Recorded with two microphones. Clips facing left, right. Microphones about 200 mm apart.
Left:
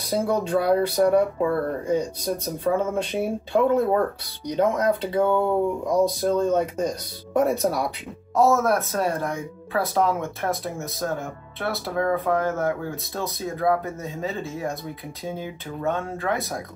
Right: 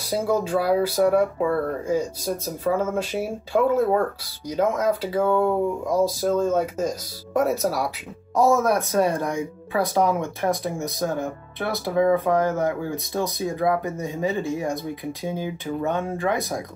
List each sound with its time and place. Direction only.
0.0 s speech: centre (ahead or behind)
8.4 s speech: 15° right (ahead or behind)
12.1 s speech: 15° right (ahead or behind)
15.8 s speech: 15° right (ahead or behind)